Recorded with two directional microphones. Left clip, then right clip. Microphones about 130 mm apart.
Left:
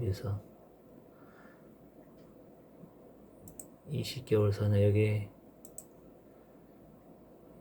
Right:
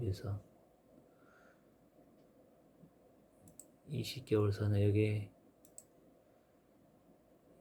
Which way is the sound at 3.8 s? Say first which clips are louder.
Left 4 dB; 25° right (ahead or behind).